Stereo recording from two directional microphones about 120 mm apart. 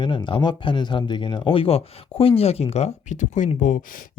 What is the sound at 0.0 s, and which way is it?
Speech, 40° left (ahead or behind).